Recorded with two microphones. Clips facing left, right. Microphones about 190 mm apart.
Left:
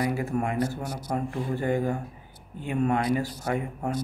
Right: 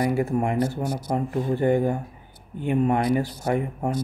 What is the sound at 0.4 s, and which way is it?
Speech, 25° right (ahead or behind).